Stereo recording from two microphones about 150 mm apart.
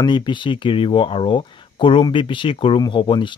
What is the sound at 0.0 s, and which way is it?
Speech, 30° left (ahead or behind).